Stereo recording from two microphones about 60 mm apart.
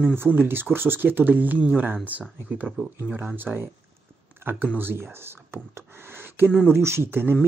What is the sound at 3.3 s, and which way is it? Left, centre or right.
Speech, right.